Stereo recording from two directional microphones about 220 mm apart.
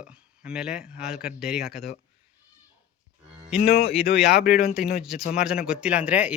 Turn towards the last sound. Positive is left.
turn(degrees=-5)  # may be behind; listen again after turning